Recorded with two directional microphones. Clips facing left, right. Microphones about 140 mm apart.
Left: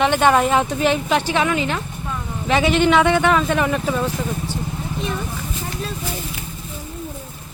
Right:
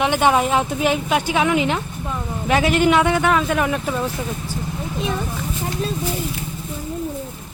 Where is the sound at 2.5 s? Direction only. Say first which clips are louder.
Even; 5° right (ahead or behind).